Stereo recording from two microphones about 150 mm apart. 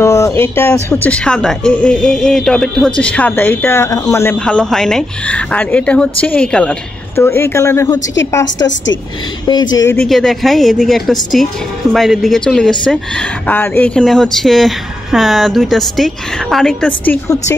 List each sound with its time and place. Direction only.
0.0 s speech: 20° left (ahead or behind)
7.2 s speech: 15° left (ahead or behind)
9.5 s speech: 30° left (ahead or behind)
9.9 s speech: centre (ahead or behind)